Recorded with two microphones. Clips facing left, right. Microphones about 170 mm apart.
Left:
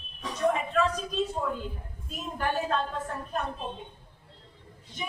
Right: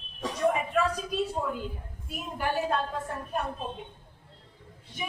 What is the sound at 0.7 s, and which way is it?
A woman's voice, 10° right (ahead or behind).